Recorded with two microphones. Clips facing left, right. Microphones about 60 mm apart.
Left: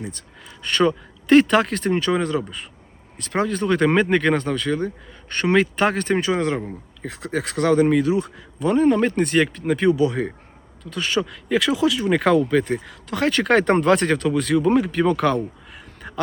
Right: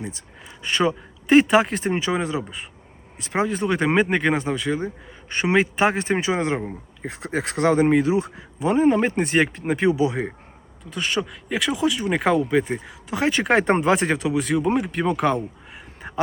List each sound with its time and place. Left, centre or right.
0.4 s speech: centre
10.8 s speech: centre
16.0 s a sound: right